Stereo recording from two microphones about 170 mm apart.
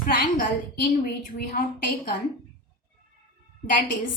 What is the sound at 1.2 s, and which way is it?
Speech, 55° left (ahead or behind).